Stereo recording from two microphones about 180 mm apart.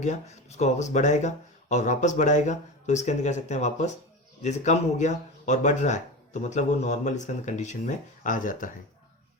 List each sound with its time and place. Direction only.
0.0 s speech: 40° left (ahead or behind)